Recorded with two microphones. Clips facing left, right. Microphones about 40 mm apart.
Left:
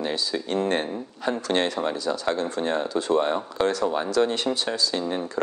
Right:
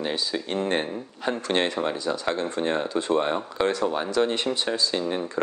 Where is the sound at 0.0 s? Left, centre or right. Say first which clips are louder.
Left 1 dB; centre.